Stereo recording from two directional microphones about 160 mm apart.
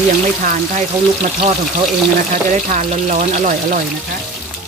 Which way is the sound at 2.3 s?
50° right (ahead or behind).